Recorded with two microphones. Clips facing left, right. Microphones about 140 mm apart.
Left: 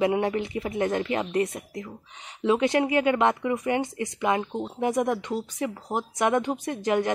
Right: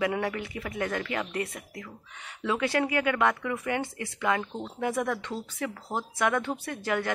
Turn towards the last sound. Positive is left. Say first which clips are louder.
# left 5 dB
turn(degrees=20)  # may be behind; listen again after turning